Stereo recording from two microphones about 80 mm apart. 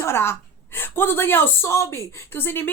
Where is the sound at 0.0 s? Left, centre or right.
Left.